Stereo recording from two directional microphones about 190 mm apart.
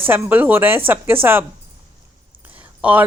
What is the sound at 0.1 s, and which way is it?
Speech, 10° right (ahead or behind).